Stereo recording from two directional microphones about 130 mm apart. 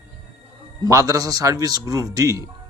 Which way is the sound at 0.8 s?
25° right (ahead or behind).